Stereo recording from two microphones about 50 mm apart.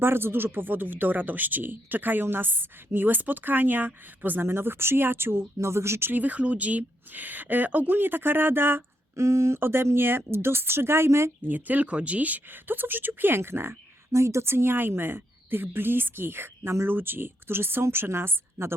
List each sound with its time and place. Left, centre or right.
0.0 s a woman's voice: right
6.1 s speech: right
9.1 s speech: right
9.6 s a woman's voice: right
11.4 s speech: right
14.4 s a woman's voice: right